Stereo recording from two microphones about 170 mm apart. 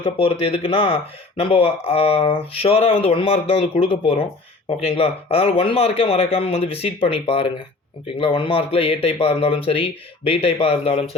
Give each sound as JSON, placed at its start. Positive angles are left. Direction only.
{"t": 0.0, "sound": "speech", "side_deg": 35}